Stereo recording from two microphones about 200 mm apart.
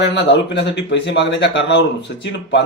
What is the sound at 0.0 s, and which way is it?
A man's voice, 60° left (ahead or behind).